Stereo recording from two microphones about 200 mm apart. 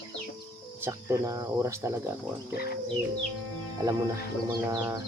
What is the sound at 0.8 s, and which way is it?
Speech, 15° right (ahead or behind).